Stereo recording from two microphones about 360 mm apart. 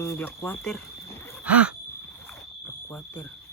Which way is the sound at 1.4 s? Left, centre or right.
Centre.